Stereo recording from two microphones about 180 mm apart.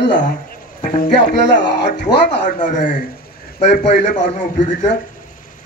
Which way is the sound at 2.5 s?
45° left (ahead or behind).